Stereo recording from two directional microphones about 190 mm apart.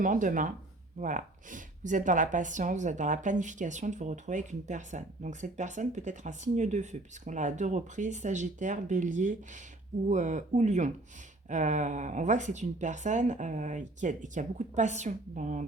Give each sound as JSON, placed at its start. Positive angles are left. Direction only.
{"t": 0.0, "sound": "speech", "side_deg": -45}